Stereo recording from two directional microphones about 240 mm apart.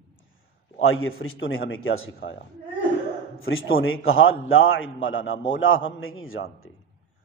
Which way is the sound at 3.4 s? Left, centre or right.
Left.